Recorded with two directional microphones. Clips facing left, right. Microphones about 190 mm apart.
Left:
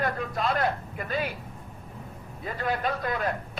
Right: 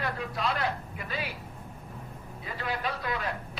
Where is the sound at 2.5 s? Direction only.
50° left (ahead or behind).